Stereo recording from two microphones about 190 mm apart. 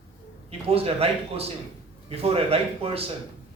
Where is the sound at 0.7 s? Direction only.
30° right (ahead or behind).